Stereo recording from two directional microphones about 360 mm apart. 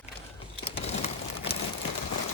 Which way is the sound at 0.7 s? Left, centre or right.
Centre.